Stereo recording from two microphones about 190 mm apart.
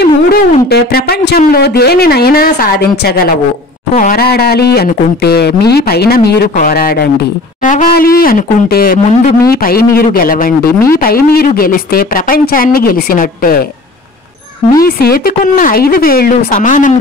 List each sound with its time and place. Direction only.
0.0 s speech: 55° left (ahead or behind)
14.8 s speech: 50° left (ahead or behind)